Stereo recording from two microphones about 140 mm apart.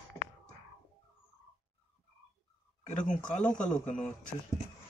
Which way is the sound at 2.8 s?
65° left (ahead or behind).